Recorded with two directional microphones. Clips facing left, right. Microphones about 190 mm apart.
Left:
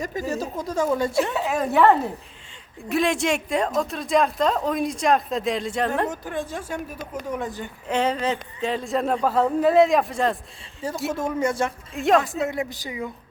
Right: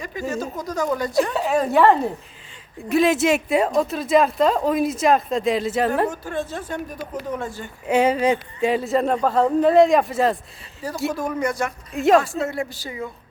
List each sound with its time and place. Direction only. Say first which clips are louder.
0.0 s a woman's voice: even; 40° left (ahead or behind)
1.3 s speech: right 3 dB; centre (ahead or behind)
6.1 s a woman's voice: right 2 dB; 15° left (ahead or behind)
7.9 s speech: right 5 dB; 10° right (ahead or behind)
11.1 s speech: left 3 dB; 25° left (ahead or behind)
11.9 s speech: right 3 dB; centre (ahead or behind)
12.2 s a woman's voice: right 1 dB; 15° left (ahead or behind)